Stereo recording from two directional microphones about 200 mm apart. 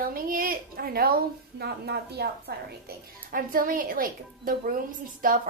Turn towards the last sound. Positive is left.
turn(degrees=-45)  # may be behind; listen again after turning